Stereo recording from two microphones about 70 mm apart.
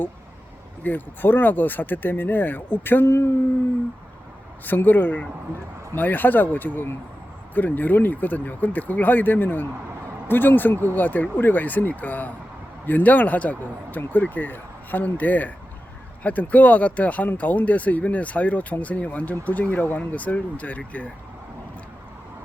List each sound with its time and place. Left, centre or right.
0.9 s speech: left
4.6 s speech: left